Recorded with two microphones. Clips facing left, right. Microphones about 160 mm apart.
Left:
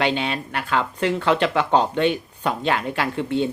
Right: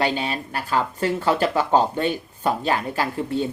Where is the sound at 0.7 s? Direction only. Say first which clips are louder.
Even; 35° right (ahead or behind).